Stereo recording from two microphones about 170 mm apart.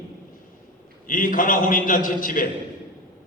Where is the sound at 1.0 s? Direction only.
55° left (ahead or behind).